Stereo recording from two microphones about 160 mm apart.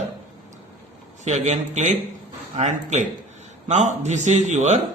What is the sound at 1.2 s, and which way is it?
A man's voice, 45° right (ahead or behind).